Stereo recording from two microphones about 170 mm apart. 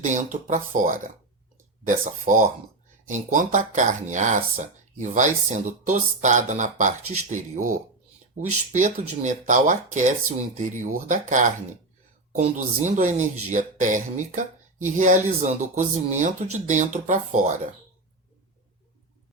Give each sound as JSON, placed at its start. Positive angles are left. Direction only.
{"t": 0.0, "sound": "speech", "side_deg": -45}